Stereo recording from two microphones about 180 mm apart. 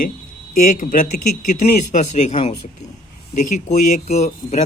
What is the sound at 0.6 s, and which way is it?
Speech, 45° left (ahead or behind).